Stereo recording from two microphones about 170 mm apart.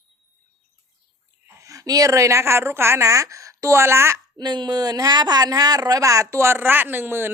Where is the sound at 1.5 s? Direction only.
20° right (ahead or behind).